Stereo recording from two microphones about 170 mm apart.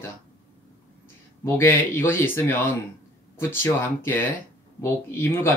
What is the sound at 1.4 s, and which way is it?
Speech, 15° left (ahead or behind).